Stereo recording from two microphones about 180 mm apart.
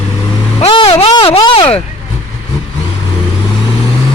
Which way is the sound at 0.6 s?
30° left (ahead or behind).